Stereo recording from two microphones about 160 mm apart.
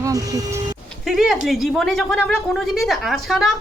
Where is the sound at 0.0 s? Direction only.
20° right (ahead or behind).